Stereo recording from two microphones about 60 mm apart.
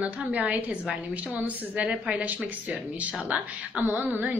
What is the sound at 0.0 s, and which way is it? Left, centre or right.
A woman's voice, right.